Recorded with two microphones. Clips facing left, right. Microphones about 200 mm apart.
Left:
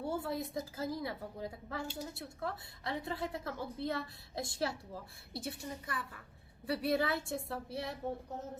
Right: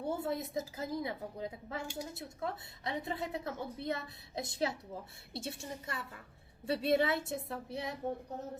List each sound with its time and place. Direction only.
0.0 s a woman's voice: 20° right (ahead or behind)